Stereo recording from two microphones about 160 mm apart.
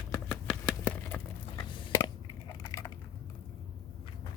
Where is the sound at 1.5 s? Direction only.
25° left (ahead or behind).